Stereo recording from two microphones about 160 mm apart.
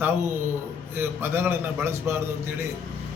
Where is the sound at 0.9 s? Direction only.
15° right (ahead or behind).